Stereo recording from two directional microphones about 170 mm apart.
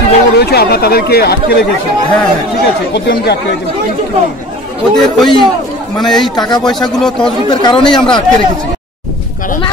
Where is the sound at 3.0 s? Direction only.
75° left (ahead or behind).